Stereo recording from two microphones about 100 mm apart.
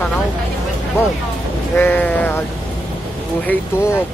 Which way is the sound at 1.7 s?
20° left (ahead or behind).